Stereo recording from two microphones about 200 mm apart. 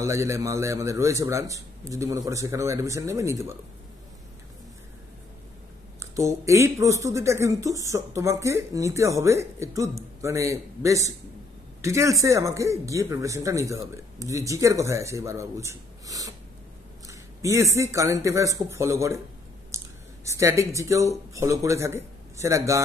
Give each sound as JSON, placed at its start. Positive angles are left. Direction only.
{"t": 0.0, "sound": "speech", "side_deg": -15}
{"t": 5.9, "sound": "speech", "side_deg": -15}
{"t": 19.7, "sound": "a sound", "side_deg": -15}
{"t": 20.2, "sound": "speech", "side_deg": -15}